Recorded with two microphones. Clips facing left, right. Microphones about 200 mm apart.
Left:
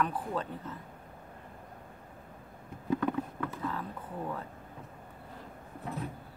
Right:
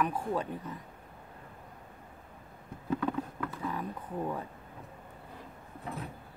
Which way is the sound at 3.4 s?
15° right (ahead or behind).